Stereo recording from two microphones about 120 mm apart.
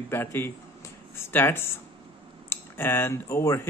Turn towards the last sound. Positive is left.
turn(degrees=20)  # may be behind; listen again after turning